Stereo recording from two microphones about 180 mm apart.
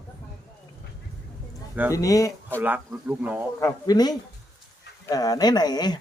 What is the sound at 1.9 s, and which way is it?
Speech, 20° left (ahead or behind).